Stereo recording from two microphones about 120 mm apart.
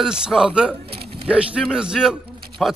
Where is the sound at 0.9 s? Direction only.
50° right (ahead or behind).